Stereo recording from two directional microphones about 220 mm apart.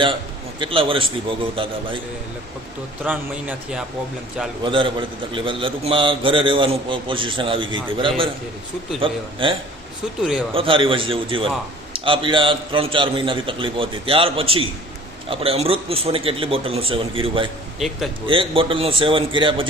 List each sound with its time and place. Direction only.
0.6 s a man's voice: 25° right (ahead or behind)
3.0 s a man's voice: 5° right (ahead or behind)
4.6 s a man's voice: 20° right (ahead or behind)
17.7 s a man's voice: centre (ahead or behind)
18.3 s a man's voice: 25° right (ahead or behind)